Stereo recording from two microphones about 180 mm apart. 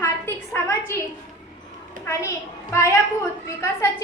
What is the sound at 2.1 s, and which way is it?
A woman's voice, 15° left (ahead or behind).